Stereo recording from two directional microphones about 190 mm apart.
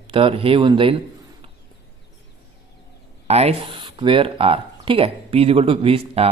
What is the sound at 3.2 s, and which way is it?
A man's voice, 30° right (ahead or behind).